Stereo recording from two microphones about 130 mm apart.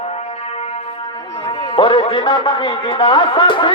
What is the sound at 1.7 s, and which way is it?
A man's voice, 40° left (ahead or behind).